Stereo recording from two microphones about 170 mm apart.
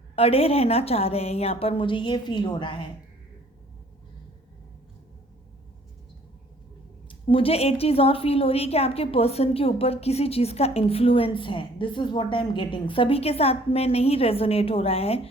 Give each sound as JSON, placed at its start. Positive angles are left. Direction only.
{"t": 0.2, "sound": "a woman's voice", "side_deg": 35}
{"t": 7.1, "sound": "a woman's voice", "side_deg": 30}